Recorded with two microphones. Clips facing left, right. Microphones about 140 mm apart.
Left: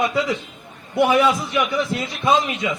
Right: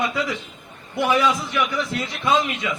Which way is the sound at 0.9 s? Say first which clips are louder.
Left 3 dB; 15° left (ahead or behind).